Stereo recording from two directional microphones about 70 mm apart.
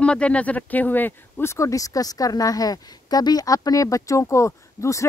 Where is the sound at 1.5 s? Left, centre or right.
Left.